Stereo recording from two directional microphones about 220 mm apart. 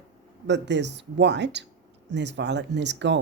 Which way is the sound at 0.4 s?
50° right (ahead or behind).